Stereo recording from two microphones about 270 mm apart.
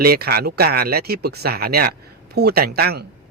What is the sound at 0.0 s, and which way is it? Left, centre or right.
A man's voice, right.